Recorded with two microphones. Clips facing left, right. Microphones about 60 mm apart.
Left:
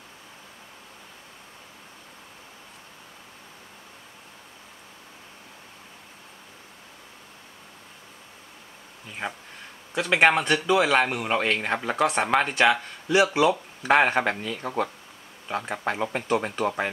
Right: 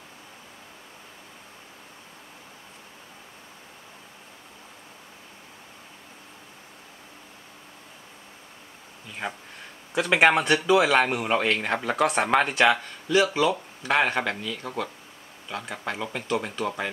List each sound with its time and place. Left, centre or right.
9.2 s speech: centre
9.9 s speech: centre
13.1 s speech: centre
14.4 s speech: left